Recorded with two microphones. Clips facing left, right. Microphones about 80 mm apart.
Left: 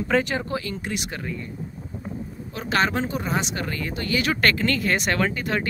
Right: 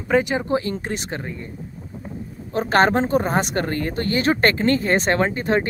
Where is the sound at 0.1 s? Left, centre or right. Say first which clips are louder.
Right 4 dB; centre.